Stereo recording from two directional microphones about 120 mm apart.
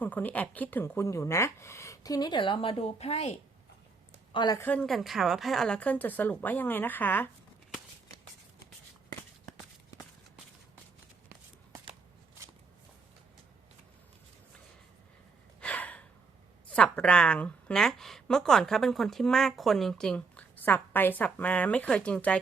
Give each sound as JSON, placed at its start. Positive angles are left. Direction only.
{"t": 0.0, "sound": "speech", "side_deg": 15}
{"t": 4.3, "sound": "speech", "side_deg": 40}
{"t": 4.5, "sound": "a woman's voice", "side_deg": 15}
{"t": 4.9, "sound": "a woman's voice", "side_deg": 0}
{"t": 15.6, "sound": "gasp", "side_deg": 10}
{"t": 16.7, "sound": "a woman's voice", "side_deg": 10}